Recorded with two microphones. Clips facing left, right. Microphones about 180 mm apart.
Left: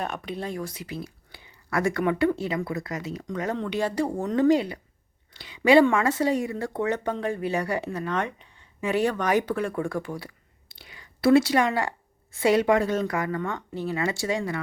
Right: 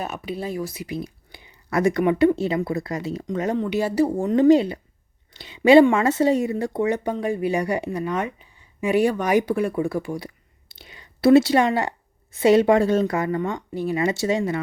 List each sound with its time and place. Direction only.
0.0 s speech: 5° right (ahead or behind); by 3.6 s 20° right (ahead or behind)
3.6 s speech: 10° right (ahead or behind)
4.4 s speech: 25° right (ahead or behind)